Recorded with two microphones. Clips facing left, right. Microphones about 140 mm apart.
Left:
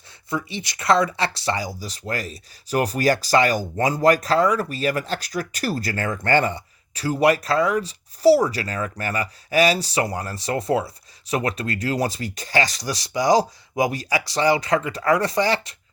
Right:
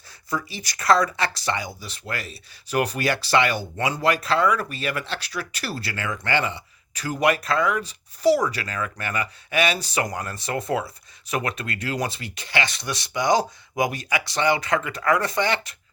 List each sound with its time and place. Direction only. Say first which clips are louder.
0.3 s speech: left 2 dB; 25° left (ahead or behind)